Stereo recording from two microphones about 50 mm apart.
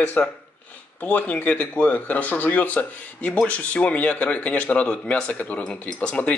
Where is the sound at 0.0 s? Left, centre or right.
Left.